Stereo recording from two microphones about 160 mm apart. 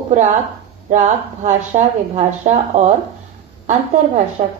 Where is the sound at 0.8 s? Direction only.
50° right (ahead or behind).